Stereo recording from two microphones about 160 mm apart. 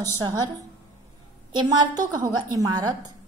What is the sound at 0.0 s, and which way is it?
Speech, 25° right (ahead or behind).